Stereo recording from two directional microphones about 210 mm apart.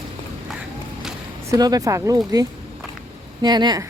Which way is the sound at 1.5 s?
15° right (ahead or behind).